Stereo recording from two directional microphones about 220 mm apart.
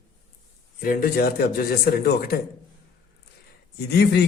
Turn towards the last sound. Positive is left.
turn(degrees=45)  # may be behind; listen again after turning